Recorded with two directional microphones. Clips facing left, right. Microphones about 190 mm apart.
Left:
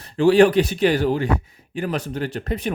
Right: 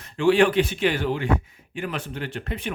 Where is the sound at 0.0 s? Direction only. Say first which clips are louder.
Left 4 dB; 35° left (ahead or behind).